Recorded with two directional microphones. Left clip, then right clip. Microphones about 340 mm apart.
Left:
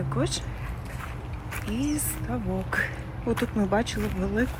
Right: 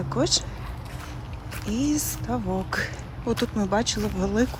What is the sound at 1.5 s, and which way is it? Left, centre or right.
A woman's voice, centre.